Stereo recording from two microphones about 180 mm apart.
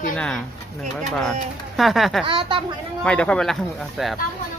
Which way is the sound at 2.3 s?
30° right (ahead or behind).